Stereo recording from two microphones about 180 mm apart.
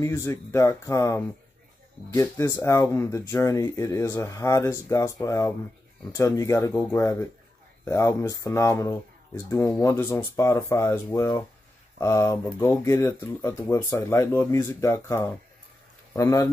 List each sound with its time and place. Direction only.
0.0 s speech: 15° left (ahead or behind)